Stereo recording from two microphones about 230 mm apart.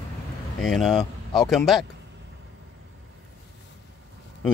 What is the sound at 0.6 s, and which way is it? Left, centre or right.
Speech, centre.